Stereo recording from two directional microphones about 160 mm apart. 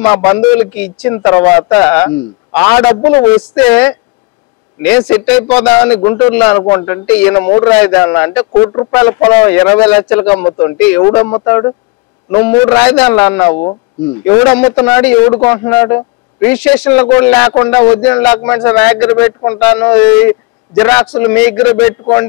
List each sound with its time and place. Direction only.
0.0 s a man's voice: 10° left (ahead or behind)
6.1 s a man's voice: 10° left (ahead or behind)
13.6 s speech: 30° left (ahead or behind)
14.2 s a man's voice: 10° left (ahead or behind)